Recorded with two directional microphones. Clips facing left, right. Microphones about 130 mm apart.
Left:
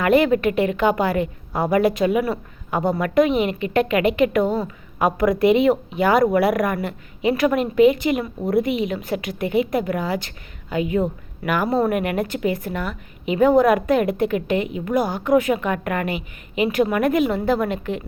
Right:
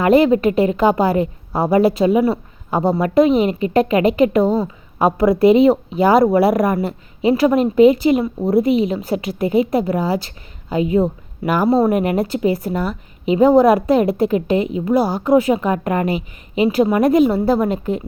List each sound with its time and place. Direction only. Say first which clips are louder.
0.0 s speech: right 4 dB; 35° right (ahead or behind)